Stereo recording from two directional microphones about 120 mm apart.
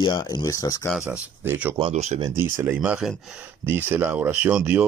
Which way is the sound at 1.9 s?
75° right (ahead or behind).